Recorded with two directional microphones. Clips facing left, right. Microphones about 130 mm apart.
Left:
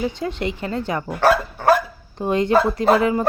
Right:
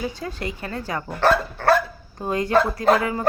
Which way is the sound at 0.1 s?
25° left (ahead or behind).